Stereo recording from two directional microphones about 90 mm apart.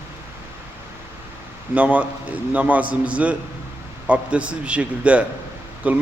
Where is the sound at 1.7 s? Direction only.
15° right (ahead or behind).